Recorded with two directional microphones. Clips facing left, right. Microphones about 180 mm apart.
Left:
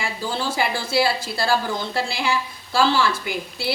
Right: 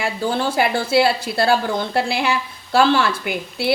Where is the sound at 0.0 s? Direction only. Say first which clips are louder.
Right 5 dB; 60° right (ahead or behind).